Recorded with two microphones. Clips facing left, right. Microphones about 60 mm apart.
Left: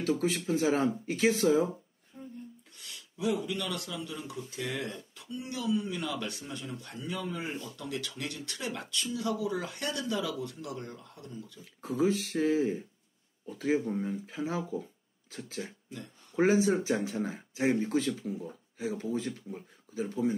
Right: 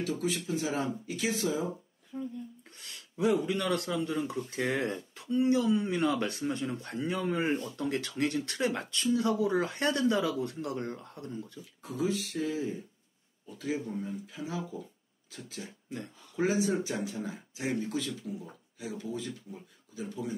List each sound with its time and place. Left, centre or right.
0.2 s speech: left
2.1 s speech: right
2.8 s speech: right
11.8 s speech: left